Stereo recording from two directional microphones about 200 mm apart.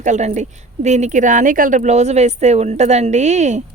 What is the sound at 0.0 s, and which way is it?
A woman's voice, 35° right (ahead or behind).